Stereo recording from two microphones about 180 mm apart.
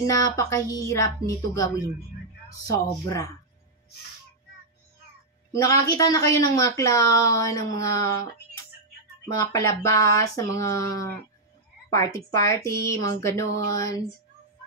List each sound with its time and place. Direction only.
0.0 s speech: 20° left (ahead or behind)
5.5 s a woman's voice: 15° left (ahead or behind)
9.3 s a woman's voice: 20° left (ahead or behind)